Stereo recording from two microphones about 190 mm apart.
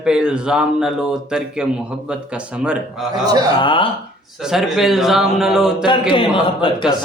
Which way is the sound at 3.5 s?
25° left (ahead or behind).